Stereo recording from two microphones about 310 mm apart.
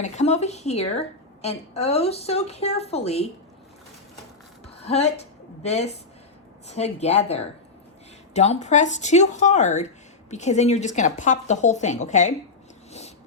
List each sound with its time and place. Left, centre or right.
0.0 s speech: left
4.6 s a sound: centre
5.6 s speech: left